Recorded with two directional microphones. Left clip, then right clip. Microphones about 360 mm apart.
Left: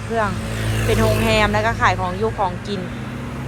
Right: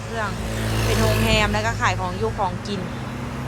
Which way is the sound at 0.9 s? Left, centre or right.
Centre.